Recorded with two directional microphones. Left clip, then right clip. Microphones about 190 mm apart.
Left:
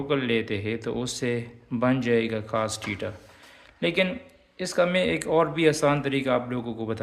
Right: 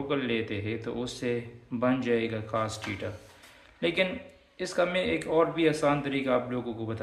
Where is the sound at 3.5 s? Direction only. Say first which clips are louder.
Left 3 dB; 35° left (ahead or behind).